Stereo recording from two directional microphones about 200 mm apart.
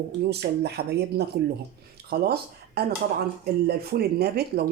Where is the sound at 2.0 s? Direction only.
50° right (ahead or behind).